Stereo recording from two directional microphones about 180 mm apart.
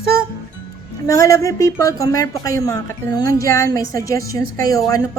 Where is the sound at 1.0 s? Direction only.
20° left (ahead or behind).